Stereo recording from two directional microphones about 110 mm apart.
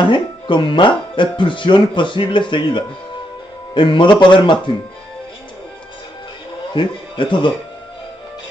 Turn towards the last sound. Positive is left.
turn(degrees=45)  # may be behind; listen again after turning